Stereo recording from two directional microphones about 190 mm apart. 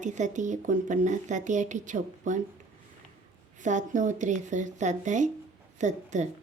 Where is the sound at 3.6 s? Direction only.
40° right (ahead or behind).